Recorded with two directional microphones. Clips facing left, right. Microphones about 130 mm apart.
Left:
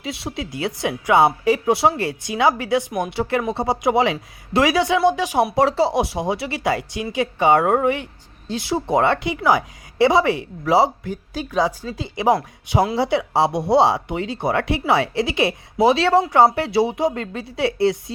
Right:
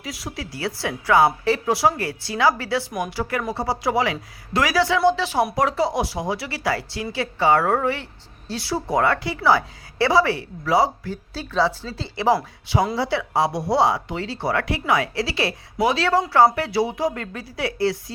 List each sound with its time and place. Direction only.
0.0 s speech: 25° left (ahead or behind)
5.5 s speech: 30° left (ahead or behind)